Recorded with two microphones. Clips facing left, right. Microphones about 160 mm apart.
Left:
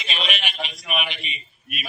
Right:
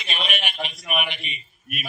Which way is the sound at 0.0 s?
55° right (ahead or behind).